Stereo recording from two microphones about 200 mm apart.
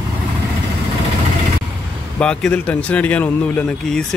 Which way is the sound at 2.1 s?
5° left (ahead or behind).